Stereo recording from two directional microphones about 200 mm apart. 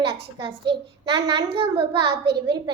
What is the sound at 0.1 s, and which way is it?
A child's voice, 20° right (ahead or behind).